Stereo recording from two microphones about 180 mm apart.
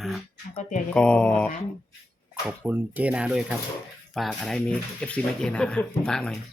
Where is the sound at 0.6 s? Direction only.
45° left (ahead or behind).